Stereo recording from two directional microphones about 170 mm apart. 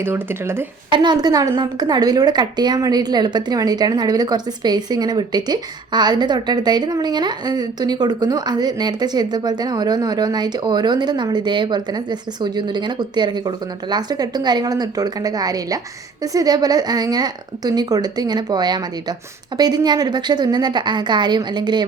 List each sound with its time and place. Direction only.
0.0 s speech: 15° right (ahead or behind)
0.9 s a woman's voice: 25° right (ahead or behind)